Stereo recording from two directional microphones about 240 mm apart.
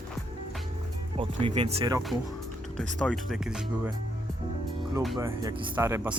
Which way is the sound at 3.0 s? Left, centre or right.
Centre.